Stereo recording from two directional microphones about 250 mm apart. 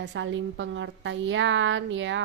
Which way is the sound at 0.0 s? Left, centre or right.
Right.